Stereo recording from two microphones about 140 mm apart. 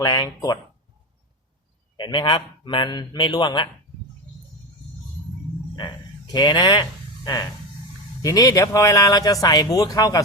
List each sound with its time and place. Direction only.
0.0 s a man's voice: 30° left (ahead or behind)
2.0 s a man's voice: 35° left (ahead or behind)
6.3 s a man's voice: 35° left (ahead or behind)
8.2 s speech: 25° left (ahead or behind)